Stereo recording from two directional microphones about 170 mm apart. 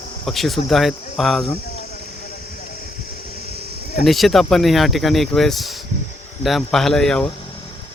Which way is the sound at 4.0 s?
Centre (ahead or behind).